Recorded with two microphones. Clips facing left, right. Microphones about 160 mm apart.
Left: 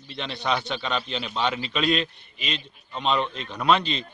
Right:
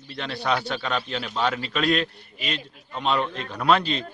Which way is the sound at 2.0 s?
55° right (ahead or behind).